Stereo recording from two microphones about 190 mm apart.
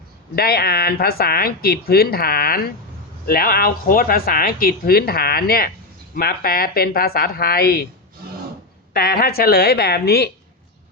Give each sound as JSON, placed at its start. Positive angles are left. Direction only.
{"t": 0.3, "sound": "speech", "side_deg": 55}
{"t": 8.9, "sound": "speech", "side_deg": 50}